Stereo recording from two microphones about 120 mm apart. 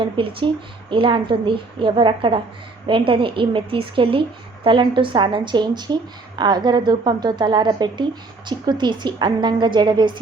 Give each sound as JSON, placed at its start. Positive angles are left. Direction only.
{"t": 0.0, "sound": "a woman's voice", "side_deg": -45}